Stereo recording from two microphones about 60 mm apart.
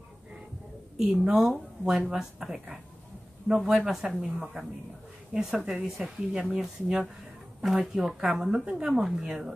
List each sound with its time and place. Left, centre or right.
1.0 s speech: centre
3.7 s speech: centre
5.3 s speech: centre